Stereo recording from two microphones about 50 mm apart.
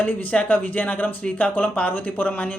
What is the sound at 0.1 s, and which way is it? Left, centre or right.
A man's voice, left.